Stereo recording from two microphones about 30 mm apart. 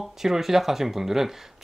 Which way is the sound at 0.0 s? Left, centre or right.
Centre.